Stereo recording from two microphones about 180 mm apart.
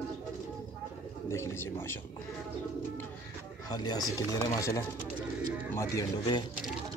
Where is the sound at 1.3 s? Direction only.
15° left (ahead or behind).